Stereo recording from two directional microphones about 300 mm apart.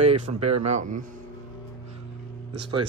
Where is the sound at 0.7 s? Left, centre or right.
Right.